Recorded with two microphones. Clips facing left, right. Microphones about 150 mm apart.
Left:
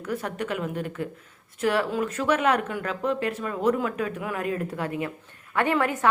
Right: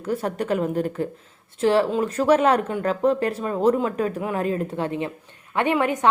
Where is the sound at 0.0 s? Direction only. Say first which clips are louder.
Right 5 dB; 30° right (ahead or behind).